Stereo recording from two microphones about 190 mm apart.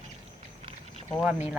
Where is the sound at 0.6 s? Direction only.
30° right (ahead or behind).